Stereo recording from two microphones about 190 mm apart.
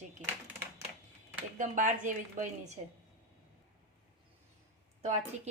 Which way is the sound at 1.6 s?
45° right (ahead or behind).